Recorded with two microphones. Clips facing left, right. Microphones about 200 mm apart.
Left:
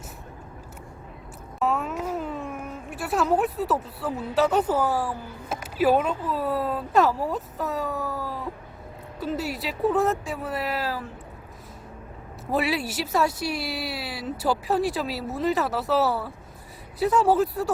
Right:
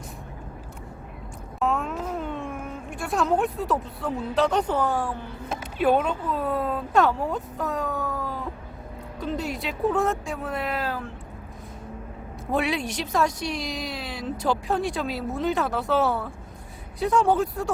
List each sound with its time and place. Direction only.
1.5 s a child's voice: 5° left (ahead or behind)
12.5 s speech: 5° left (ahead or behind)